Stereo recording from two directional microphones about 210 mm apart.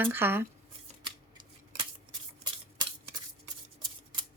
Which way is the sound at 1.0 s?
20° right (ahead or behind).